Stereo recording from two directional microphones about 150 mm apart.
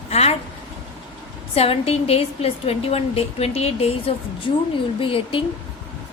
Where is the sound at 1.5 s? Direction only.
40° left (ahead or behind).